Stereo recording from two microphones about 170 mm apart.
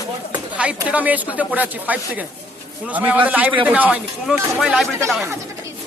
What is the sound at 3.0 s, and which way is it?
Speech, 10° right (ahead or behind).